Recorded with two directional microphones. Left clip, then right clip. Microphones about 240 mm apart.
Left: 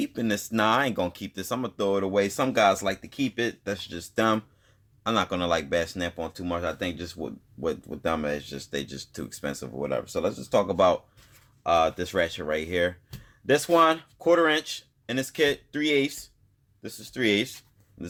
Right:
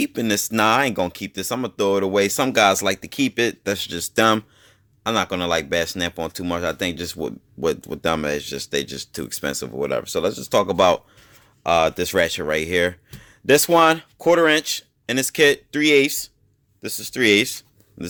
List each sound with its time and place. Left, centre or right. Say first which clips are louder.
0.0 s speech: right 7 dB; right